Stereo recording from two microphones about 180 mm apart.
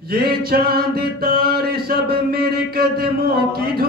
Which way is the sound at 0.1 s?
60° right (ahead or behind).